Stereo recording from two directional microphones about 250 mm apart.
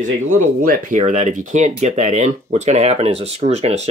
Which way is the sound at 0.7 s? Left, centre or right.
Right.